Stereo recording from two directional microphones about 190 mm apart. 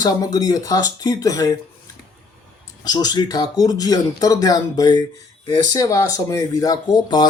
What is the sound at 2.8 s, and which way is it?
Speech, 20° left (ahead or behind).